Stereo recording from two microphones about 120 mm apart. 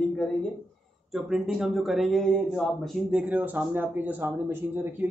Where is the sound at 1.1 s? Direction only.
5° right (ahead or behind).